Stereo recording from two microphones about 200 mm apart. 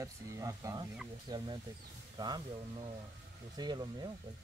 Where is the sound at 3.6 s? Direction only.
20° right (ahead or behind).